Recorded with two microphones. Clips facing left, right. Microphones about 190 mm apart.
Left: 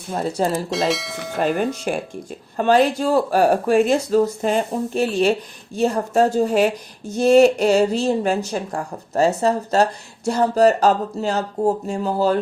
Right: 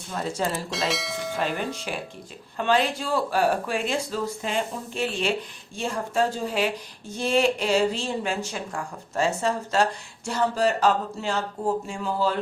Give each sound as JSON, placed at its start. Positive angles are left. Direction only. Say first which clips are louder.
{"t": 0.1, "sound": "speech", "louder": "left 7 dB", "side_deg": 35}
{"t": 0.7, "sound": "speech", "louder": "left 6 dB", "side_deg": 0}
{"t": 1.3, "sound": "speech", "louder": "left 9 dB", "side_deg": 50}